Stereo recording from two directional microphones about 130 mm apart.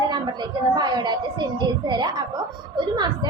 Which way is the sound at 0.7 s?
30° right (ahead or behind).